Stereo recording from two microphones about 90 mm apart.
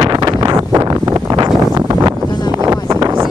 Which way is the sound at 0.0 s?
50° right (ahead or behind).